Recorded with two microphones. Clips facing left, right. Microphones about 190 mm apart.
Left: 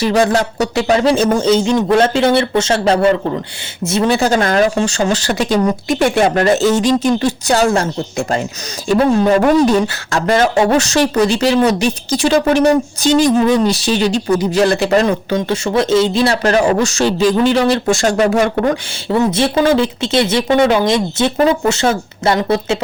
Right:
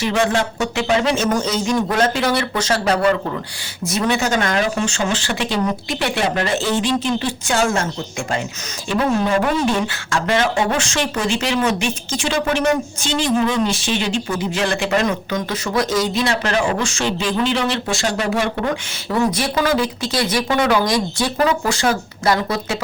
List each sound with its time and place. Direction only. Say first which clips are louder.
0.0 s speech: left 5 dB; 35° left (ahead or behind)
8.9 s speech: left 6 dB; 40° left (ahead or behind)
19.1 s speech: left 5 dB; 25° left (ahead or behind)